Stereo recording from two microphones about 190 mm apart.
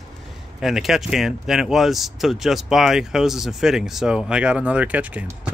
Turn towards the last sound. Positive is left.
turn(degrees=-10)  # may be behind; listen again after turning